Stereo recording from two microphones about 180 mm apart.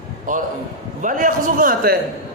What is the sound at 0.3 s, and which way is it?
A man's voice, 45° right (ahead or behind).